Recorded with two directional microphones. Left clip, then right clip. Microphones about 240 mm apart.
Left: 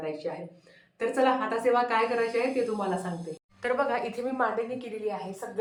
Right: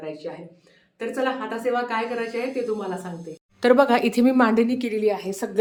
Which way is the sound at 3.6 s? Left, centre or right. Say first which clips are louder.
Right 10 dB; right.